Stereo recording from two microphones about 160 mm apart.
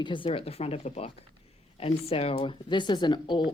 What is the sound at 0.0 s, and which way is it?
Speech, 30° left (ahead or behind).